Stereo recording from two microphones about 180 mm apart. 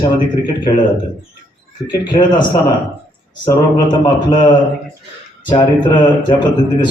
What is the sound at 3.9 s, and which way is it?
A man's voice, 25° left (ahead or behind).